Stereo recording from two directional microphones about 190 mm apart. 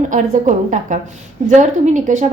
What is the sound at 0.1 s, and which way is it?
A woman's voice, 40° right (ahead or behind).